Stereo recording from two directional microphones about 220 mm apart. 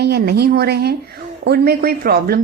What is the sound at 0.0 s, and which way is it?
A woman's voice, 45° right (ahead or behind).